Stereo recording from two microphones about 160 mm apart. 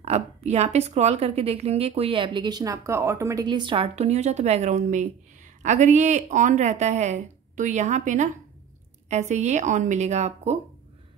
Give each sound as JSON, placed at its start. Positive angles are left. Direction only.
{"t": 0.0, "sound": "speech", "side_deg": -40}